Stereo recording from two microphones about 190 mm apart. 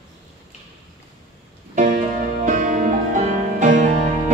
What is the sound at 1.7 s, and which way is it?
Music, 40° right (ahead or behind).